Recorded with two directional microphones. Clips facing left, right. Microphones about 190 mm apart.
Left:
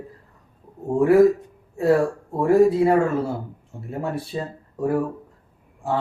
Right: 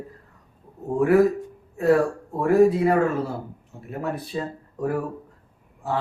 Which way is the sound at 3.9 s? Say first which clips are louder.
Left 2 dB; 30° left (ahead or behind).